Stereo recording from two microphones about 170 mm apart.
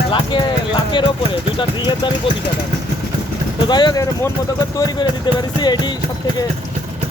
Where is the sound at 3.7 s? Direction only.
25° left (ahead or behind).